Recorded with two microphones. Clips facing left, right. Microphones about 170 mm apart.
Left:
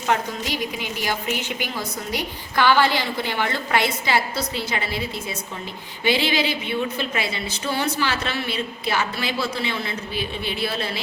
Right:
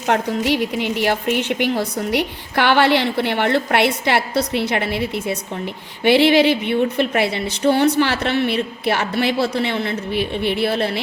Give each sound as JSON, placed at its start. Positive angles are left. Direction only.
{"t": 0.1, "sound": "a woman's voice", "side_deg": -70}